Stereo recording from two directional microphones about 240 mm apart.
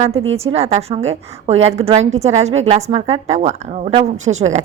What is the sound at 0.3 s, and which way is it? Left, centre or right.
A woman's voice, right.